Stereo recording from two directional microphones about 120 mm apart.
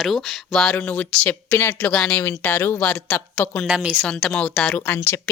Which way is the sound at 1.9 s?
5° left (ahead or behind).